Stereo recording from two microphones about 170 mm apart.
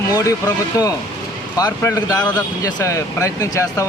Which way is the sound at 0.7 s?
20° left (ahead or behind).